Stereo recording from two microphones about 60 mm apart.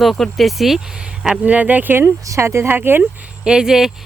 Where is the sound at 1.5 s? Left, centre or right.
Right.